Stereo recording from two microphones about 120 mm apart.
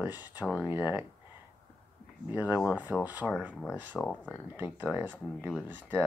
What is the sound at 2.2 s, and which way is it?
Speech, 15° right (ahead or behind).